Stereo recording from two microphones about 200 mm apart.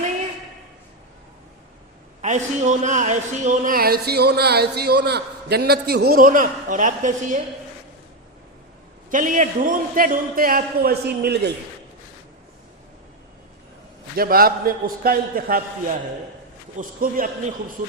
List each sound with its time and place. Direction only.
2.2 s speech: 35° right (ahead or behind)
9.0 s speech: 40° right (ahead or behind)
14.2 s speech: 50° right (ahead or behind)
16.7 s speech: 45° right (ahead or behind)